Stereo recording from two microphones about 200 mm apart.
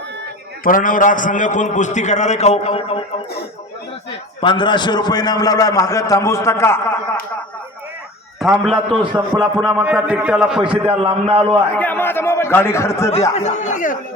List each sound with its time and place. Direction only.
0.6 s a man's voice: 45° left (ahead or behind)
4.4 s a man's voice: 25° left (ahead or behind)
8.4 s a man's voice: centre (ahead or behind)
8.9 s a man's voice: 25° right (ahead or behind)
9.4 s a man's voice: centre (ahead or behind)
10.7 s a man's voice: 30° right (ahead or behind)
11.8 s speech: 10° left (ahead or behind)
13.3 s speech: 35° left (ahead or behind)